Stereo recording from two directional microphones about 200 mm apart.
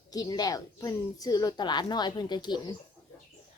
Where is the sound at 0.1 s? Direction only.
20° left (ahead or behind).